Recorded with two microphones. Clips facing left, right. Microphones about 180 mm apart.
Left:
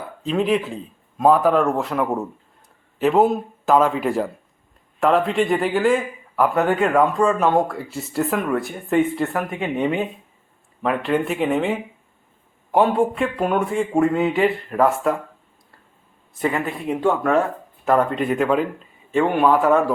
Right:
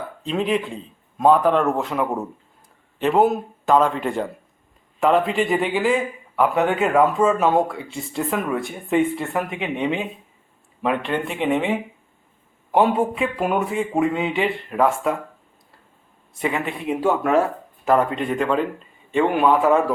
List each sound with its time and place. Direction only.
0.2 s a man's voice: centre (ahead or behind)
16.3 s a man's voice: centre (ahead or behind)